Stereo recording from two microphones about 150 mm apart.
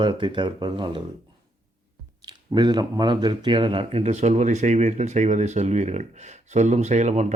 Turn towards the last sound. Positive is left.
turn(degrees=-50)  # may be behind; listen again after turning